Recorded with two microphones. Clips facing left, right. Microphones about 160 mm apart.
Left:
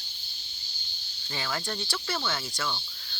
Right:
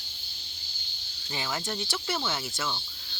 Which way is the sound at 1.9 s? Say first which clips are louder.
Even; 15° right (ahead or behind).